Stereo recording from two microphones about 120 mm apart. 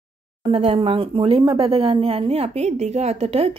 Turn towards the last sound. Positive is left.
turn(degrees=-60)  # may be behind; listen again after turning